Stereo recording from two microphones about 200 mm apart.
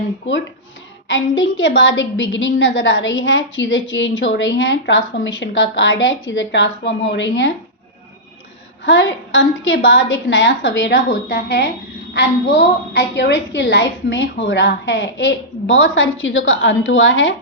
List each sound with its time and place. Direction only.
1.0 s a woman's voice: 70° left (ahead or behind)
8.8 s a woman's voice: 65° left (ahead or behind)